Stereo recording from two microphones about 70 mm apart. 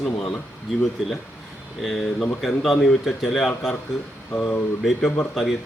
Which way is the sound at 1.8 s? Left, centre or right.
Centre.